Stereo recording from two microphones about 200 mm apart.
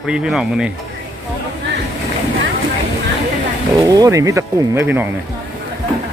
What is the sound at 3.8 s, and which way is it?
A man's voice, 15° right (ahead or behind).